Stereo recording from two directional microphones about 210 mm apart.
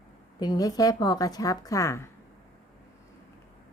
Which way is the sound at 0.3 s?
20° left (ahead or behind).